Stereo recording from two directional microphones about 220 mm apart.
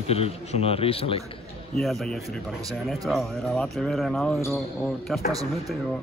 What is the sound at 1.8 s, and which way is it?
Speech, centre (ahead or behind).